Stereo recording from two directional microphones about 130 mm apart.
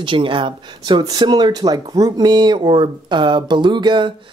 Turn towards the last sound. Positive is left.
turn(degrees=-40)  # may be behind; listen again after turning